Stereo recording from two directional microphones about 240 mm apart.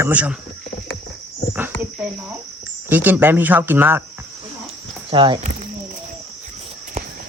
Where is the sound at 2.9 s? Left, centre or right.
Centre.